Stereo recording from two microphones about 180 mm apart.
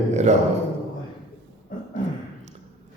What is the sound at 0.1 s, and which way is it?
Speech, 40° right (ahead or behind).